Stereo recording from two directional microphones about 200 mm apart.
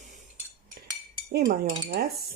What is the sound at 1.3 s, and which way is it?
Speech, 50° right (ahead or behind).